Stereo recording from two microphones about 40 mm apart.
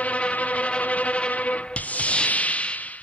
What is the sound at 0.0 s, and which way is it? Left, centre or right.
Music, left.